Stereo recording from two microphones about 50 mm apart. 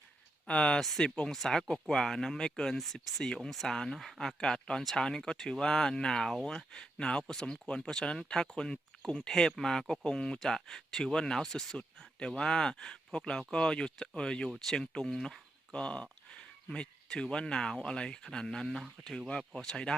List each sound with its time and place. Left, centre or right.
0.4 s speech: left
0.8 s speech: centre
4.4 s speech: centre